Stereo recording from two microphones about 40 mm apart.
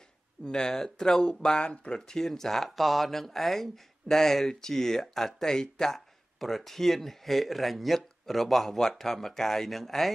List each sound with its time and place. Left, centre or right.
0.5 s speech: centre